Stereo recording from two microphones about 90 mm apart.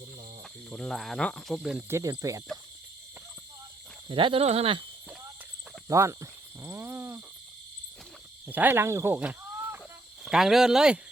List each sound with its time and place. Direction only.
0.7 s speech: 5° left (ahead or behind)
1.9 s speech: 35° right (ahead or behind)
4.1 s speech: 75° right (ahead or behind)
5.9 s cricket: 35° right (ahead or behind)
8.4 s speech: 20° right (ahead or behind)
9.6 s chicken: 30° right (ahead or behind)
10.2 s speech: 5° right (ahead or behind)